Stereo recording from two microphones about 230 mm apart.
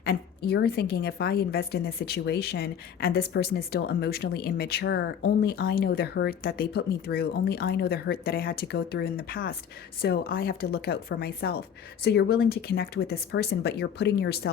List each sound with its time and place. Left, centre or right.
0.0 s speech: left